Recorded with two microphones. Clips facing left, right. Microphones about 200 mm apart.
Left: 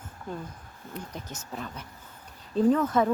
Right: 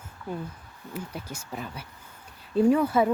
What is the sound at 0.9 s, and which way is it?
Speech, 10° right (ahead or behind).